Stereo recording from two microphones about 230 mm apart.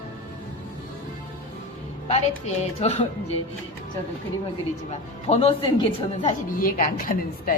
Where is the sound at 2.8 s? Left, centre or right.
Left.